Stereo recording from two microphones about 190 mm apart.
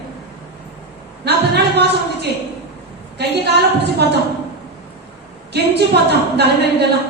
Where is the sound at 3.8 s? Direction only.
60° right (ahead or behind).